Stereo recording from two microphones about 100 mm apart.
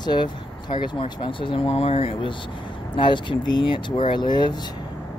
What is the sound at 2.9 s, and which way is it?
Speech, 55° left (ahead or behind).